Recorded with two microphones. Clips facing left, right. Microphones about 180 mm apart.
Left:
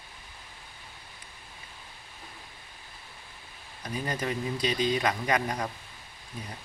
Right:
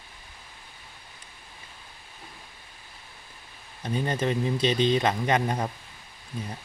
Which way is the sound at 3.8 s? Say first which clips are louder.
Right 5 dB; 25° right (ahead or behind).